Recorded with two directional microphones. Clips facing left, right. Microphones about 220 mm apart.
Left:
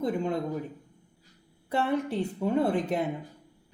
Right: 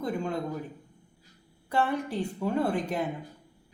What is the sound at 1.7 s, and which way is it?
Speech, 25° left (ahead or behind).